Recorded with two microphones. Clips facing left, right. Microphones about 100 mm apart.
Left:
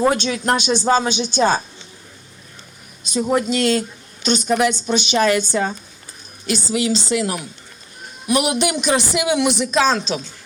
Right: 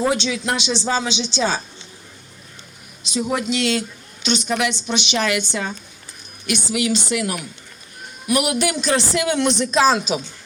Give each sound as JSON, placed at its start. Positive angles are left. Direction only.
{"t": 0.0, "sound": "speech", "side_deg": 45}
{"t": 3.1, "sound": "a woman's voice", "side_deg": 40}
{"t": 9.8, "sound": "speech", "side_deg": -5}